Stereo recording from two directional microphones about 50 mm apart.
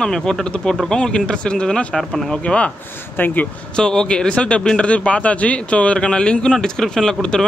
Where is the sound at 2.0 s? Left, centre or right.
Centre.